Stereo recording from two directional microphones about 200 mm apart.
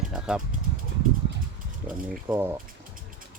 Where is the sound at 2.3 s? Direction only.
15° right (ahead or behind).